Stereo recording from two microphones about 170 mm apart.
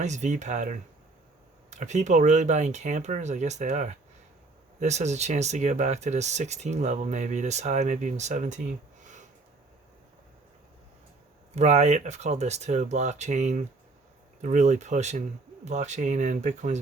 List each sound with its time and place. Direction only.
0.0 s speech: 45° right (ahead or behind)
11.5 s speech: 40° right (ahead or behind)